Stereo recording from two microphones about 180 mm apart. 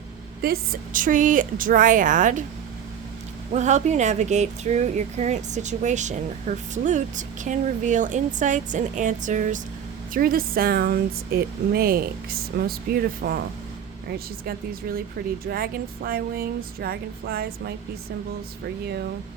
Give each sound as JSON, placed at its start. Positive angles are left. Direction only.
{"t": 0.4, "sound": "a woman's voice", "side_deg": -55}
{"t": 3.5, "sound": "speech", "side_deg": -40}
{"t": 15.4, "sound": "speech", "side_deg": -55}